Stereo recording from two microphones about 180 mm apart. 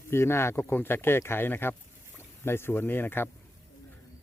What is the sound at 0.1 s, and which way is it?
A man's voice, 15° left (ahead or behind).